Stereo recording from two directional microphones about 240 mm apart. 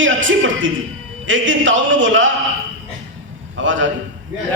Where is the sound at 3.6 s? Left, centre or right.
Right.